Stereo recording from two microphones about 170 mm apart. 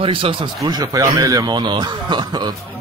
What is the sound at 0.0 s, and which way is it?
A man's voice, 30° right (ahead or behind).